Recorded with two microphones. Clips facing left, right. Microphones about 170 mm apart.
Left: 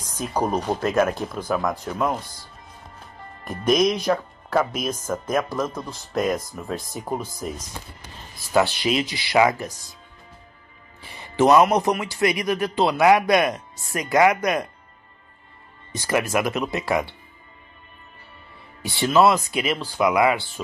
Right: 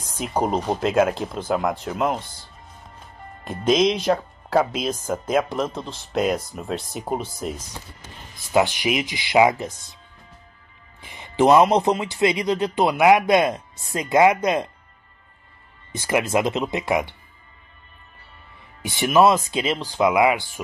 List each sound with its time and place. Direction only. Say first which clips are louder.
0.2 s speech: right 1 dB; 25° right (ahead or behind)
0.6 s speech: right 1 dB; 10° right (ahead or behind)
0.8 s speech: right 2 dB; 25° right (ahead or behind)
3.4 s speech: right 1 dB; 25° right (ahead or behind)
5.1 s speech: right 2 dB; 25° right (ahead or behind)
6.7 s speech: right 2 dB; 75° right (ahead or behind)
7.1 s speech: right 2 dB; 25° right (ahead or behind)
8.5 s speech: even; 15° right (ahead or behind)
11.0 s speech: right 1 dB; 20° right (ahead or behind)
16.0 s speech: right 1 dB; 20° right (ahead or behind)
18.8 s speech: right 1 dB; 20° right (ahead or behind)